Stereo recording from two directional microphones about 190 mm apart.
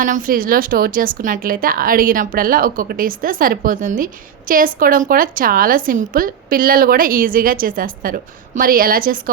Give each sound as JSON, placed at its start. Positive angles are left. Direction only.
{"t": 0.0, "sound": "a woman's voice", "side_deg": -45}